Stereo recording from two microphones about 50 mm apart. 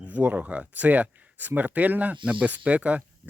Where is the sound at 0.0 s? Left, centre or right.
Right.